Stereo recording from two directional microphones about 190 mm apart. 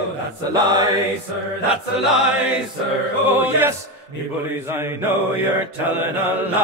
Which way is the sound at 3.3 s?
10° right (ahead or behind).